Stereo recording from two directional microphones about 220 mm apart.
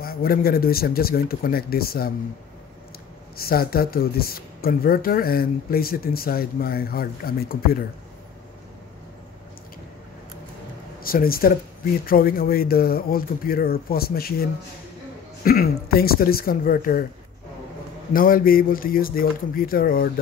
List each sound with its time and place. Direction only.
0.0 s speech: 40° left (ahead or behind)
3.3 s speech: 45° left (ahead or behind)
11.0 s speech: 40° left (ahead or behind)
15.4 s speech: 40° left (ahead or behind)
18.1 s speech: 40° left (ahead or behind)